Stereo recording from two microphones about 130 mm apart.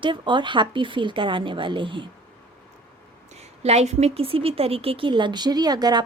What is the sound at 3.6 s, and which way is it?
Speech, 55° right (ahead or behind).